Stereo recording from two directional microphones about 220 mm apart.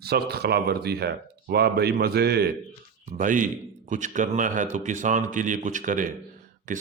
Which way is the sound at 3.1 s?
35° right (ahead or behind).